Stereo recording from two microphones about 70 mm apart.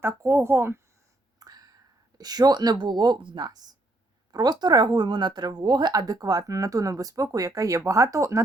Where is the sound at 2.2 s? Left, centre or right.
Right.